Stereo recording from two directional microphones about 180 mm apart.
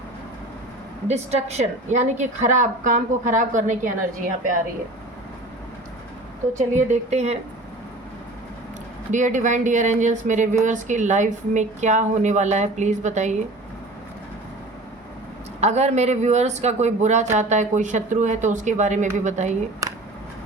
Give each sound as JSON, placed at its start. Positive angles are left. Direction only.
{"t": 1.0, "sound": "a woman's voice", "side_deg": -40}
{"t": 6.6, "sound": "speech", "side_deg": -40}
{"t": 9.1, "sound": "speech", "side_deg": -45}
{"t": 15.6, "sound": "speech", "side_deg": -40}
{"t": 19.8, "sound": "a sound", "side_deg": -20}